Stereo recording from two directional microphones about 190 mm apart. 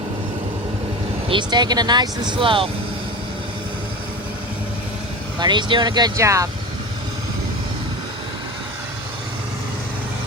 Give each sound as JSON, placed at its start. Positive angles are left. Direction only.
{"t": 1.3, "sound": "speech", "side_deg": -25}
{"t": 5.4, "sound": "speech", "side_deg": -25}